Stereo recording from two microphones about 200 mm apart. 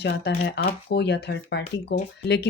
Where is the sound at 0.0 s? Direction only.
60° left (ahead or behind).